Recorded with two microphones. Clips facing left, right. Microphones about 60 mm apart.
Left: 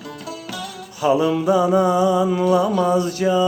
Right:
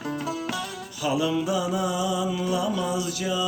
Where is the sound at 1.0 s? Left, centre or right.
Left.